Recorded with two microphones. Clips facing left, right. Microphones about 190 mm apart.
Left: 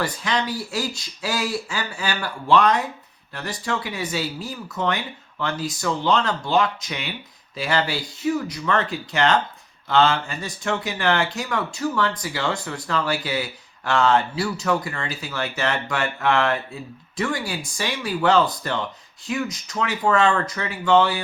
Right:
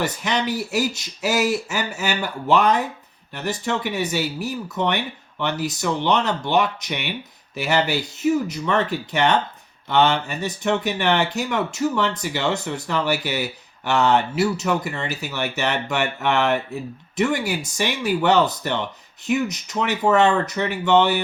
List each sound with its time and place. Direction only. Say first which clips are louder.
0.0 s speech: right 1 dB; 20° right (ahead or behind)